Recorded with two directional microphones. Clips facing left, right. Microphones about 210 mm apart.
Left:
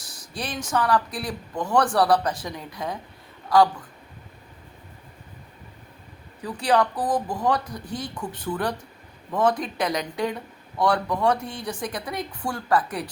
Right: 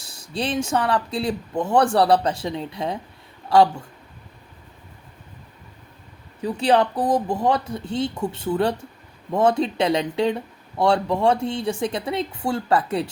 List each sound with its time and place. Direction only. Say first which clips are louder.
0.1 s speech: right 7 dB; 25° right (ahead or behind)
6.4 s speech: right 3 dB; 25° right (ahead or behind)